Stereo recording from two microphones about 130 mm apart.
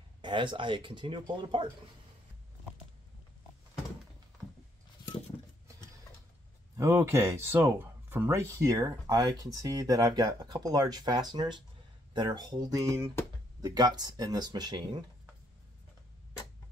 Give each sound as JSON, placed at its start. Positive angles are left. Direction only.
{"t": 0.2, "sound": "speech", "side_deg": -40}
{"t": 6.8, "sound": "speech", "side_deg": -20}